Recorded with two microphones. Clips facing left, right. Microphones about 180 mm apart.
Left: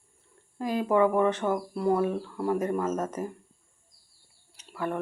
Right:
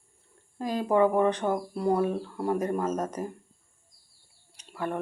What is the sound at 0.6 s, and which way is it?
Speech, 20° right (ahead or behind).